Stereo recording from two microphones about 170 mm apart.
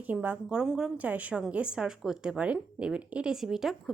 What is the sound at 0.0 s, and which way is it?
A woman's voice, 10° right (ahead or behind).